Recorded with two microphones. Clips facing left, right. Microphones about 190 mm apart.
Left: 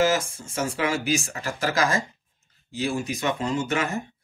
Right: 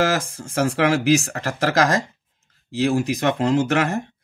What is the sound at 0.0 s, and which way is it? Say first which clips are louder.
Speech: right 1 dB; 85° right.